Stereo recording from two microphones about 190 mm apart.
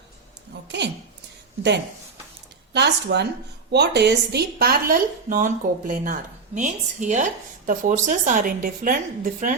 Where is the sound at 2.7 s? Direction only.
65° right (ahead or behind).